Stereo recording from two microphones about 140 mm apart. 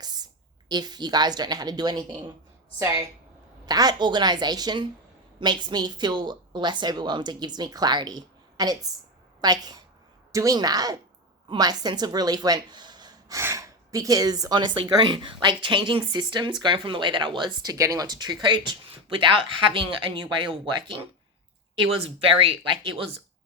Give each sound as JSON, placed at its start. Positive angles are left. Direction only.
{"t": 0.0, "sound": "a sound", "side_deg": -30}
{"t": 0.7, "sound": "a woman's voice", "side_deg": -30}
{"t": 22.8, "sound": "a woman's voice", "side_deg": -40}